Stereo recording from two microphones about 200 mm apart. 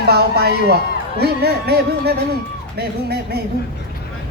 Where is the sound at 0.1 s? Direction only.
50° right (ahead or behind).